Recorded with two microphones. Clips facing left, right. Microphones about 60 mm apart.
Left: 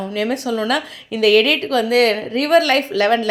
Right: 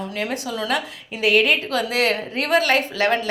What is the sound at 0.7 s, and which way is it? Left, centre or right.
Speech, left.